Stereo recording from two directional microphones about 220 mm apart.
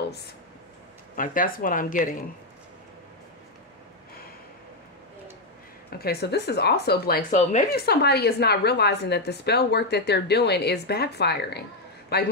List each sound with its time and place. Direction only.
0.0 s a sound: 50° left (ahead or behind)
1.1 s speech: 40° left (ahead or behind)
5.9 s a woman's voice: 45° left (ahead or behind)
7.8 s a woman's voice: 50° left (ahead or behind)